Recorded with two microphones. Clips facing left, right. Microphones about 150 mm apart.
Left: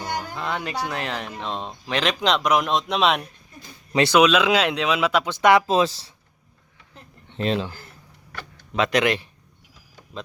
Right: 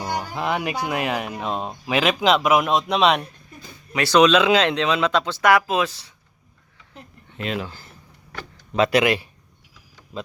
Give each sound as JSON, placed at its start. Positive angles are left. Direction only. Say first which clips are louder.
{"t": 0.3, "sound": "speech", "louder": "right 6 dB", "side_deg": -15}
{"t": 7.3, "sound": "speech", "louder": "left 4 dB", "side_deg": 30}
{"t": 8.7, "sound": "speech", "louder": "right 2 dB", "side_deg": -5}